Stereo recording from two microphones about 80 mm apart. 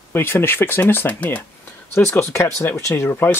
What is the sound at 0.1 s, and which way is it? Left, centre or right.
Speech, left.